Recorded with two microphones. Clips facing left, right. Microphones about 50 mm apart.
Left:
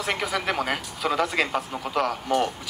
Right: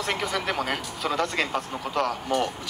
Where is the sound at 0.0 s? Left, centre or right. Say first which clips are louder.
Left 1 dB; centre.